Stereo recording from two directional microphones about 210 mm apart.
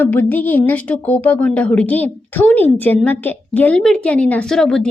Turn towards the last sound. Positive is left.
turn(degrees=5)  # may be behind; listen again after turning